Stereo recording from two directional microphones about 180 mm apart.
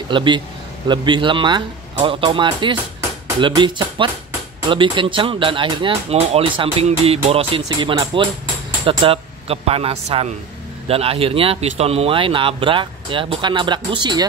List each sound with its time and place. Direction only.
0.1 s speech: 25° right (ahead or behind)